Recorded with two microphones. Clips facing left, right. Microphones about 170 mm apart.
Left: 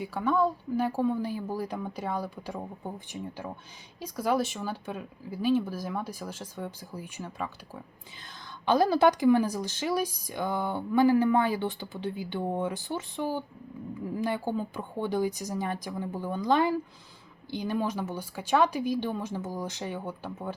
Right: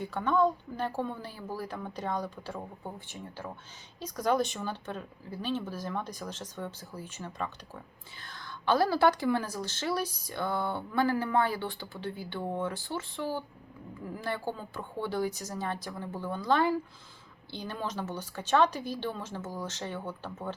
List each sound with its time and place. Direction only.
0.0 s speech: 10° left (ahead or behind)
4.0 s speech: 5° left (ahead or behind)
8.2 s speech: 20° left (ahead or behind)